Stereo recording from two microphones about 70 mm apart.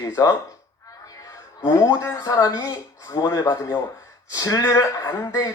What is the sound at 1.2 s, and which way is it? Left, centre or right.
Music, left.